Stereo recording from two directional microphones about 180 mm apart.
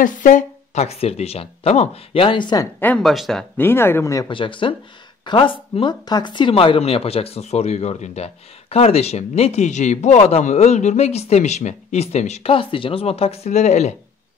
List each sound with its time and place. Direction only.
0.0 s speech: 45° left (ahead or behind); by 2.7 s 25° left (ahead or behind)
2.8 s speech: 5° left (ahead or behind); by 13.9 s 40° left (ahead or behind)